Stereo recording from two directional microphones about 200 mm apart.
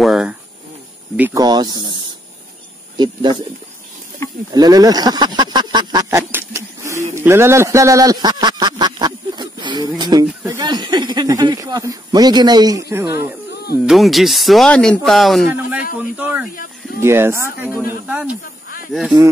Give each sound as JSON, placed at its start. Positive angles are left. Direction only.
{"t": 0.0, "sound": "a sound", "side_deg": 0}
{"t": 1.1, "sound": "speech", "side_deg": -15}
{"t": 3.0, "sound": "speech", "side_deg": -20}
{"t": 4.5, "sound": "speech", "side_deg": -20}
{"t": 13.8, "sound": "speech", "side_deg": 0}